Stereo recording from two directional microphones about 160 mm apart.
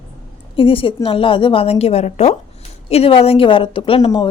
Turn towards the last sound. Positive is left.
turn(degrees=35)  # may be behind; listen again after turning